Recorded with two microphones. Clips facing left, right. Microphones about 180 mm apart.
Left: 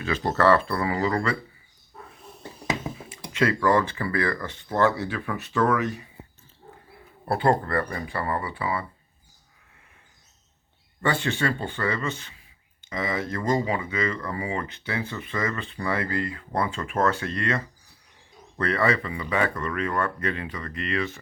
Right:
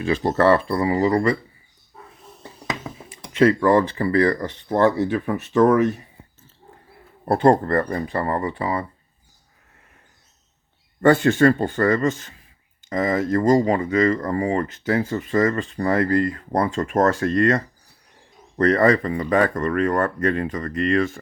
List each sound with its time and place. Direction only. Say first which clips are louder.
0.0 s speech: right 4 dB; 25° right (ahead or behind)
3.1 s speech: right 8 dB; 30° right (ahead or behind)
7.3 s speech: right 6 dB; 40° right (ahead or behind)
11.0 s speech: right 11 dB; 45° right (ahead or behind)